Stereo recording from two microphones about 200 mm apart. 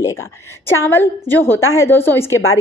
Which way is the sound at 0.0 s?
15° left (ahead or behind).